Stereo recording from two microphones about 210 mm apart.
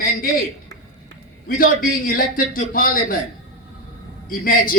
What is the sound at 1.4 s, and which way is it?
A man's voice, 45° left (ahead or behind).